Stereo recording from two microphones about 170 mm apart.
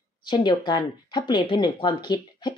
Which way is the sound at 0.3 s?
25° left (ahead or behind).